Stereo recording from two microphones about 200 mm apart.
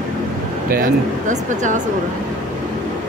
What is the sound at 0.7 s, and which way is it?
Speech, 40° right (ahead or behind).